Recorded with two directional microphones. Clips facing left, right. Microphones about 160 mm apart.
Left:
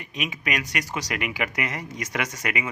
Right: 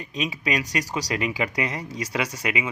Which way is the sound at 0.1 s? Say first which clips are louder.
Right 3 dB; 35° right (ahead or behind).